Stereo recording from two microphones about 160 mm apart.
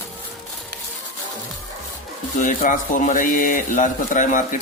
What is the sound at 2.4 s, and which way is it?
A man's voice, 55° left (ahead or behind).